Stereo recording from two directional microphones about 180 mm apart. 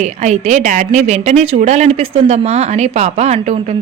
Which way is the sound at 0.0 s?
40° right (ahead or behind).